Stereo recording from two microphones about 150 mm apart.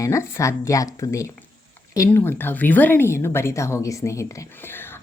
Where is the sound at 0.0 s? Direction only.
20° left (ahead or behind).